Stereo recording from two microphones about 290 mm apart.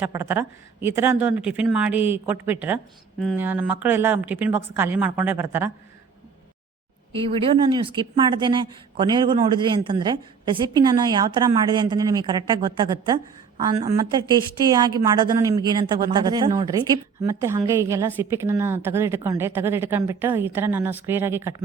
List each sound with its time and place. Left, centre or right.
0.0 s a woman's voice: centre
7.1 s a woman's voice: centre